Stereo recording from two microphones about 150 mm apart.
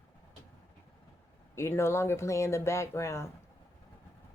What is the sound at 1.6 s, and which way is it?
A woman's voice, 15° left (ahead or behind).